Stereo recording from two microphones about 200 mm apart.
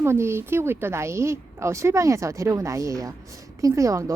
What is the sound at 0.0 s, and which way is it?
A woman's voice, 10° right (ahead or behind).